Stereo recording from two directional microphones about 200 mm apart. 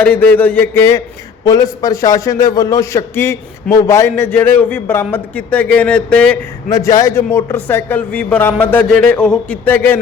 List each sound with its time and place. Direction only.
0.0 s a man's voice: 10° left (ahead or behind)